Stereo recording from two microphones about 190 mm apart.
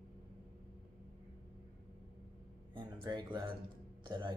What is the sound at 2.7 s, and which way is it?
Speech, 25° right (ahead or behind).